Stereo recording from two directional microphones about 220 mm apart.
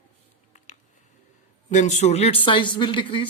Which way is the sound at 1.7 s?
30° left (ahead or behind).